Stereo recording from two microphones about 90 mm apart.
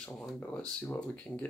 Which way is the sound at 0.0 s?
10° left (ahead or behind).